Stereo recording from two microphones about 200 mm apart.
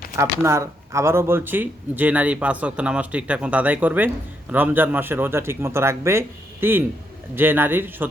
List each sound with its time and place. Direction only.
0.2 s speech: 15° right (ahead or behind)